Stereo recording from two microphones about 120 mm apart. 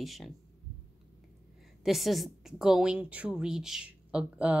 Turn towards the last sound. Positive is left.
turn(degrees=-10)  # may be behind; listen again after turning